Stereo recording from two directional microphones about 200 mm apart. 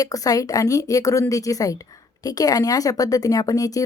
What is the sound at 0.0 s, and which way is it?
Speech, 15° left (ahead or behind).